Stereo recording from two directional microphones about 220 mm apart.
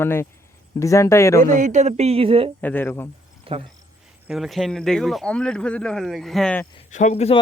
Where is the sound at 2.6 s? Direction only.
10° left (ahead or behind).